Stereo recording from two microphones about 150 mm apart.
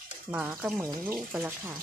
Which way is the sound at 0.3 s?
10° right (ahead or behind).